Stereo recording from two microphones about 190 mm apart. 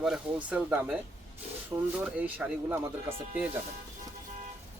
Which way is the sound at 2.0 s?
10° right (ahead or behind).